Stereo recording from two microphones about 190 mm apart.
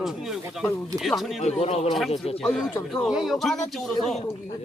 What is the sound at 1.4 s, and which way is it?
Speech, 35° left (ahead or behind).